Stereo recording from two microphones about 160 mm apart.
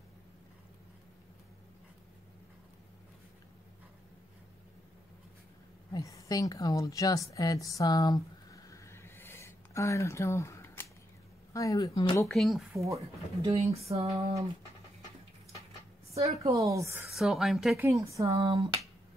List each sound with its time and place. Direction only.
5.9 s a woman's voice: 20° left (ahead or behind)
12.3 s a woman's voice: centre (ahead or behind)
12.7 s a woman's voice: 20° right (ahead or behind)
13.4 s a woman's voice: 35° right (ahead or behind)
16.2 s a woman's voice: 40° right (ahead or behind)
16.5 s a woman's voice: 20° right (ahead or behind)
17.1 s a woman's voice: centre (ahead or behind)
17.7 s a woman's voice: 20° right (ahead or behind)
18.4 s a woman's voice: 35° right (ahead or behind)